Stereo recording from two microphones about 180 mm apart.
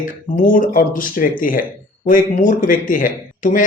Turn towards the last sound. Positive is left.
turn(degrees=50)  # may be behind; listen again after turning